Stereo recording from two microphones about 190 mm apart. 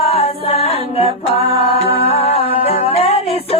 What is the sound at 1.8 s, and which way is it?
Music, 30° left (ahead or behind).